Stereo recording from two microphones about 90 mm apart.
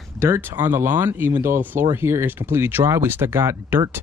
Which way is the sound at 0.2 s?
25° right (ahead or behind).